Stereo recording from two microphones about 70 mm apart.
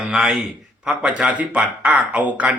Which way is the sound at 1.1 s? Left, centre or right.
Centre.